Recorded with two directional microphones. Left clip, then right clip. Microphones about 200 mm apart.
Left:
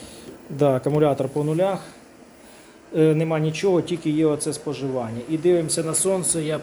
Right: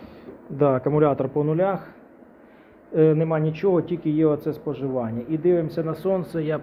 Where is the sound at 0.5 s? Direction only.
20° left (ahead or behind).